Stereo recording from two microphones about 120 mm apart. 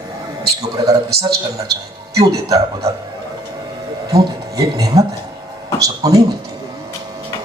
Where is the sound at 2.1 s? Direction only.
30° right (ahead or behind).